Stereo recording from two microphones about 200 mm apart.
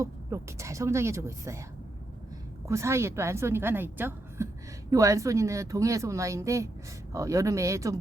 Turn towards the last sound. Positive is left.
turn(degrees=-15)  # may be behind; listen again after turning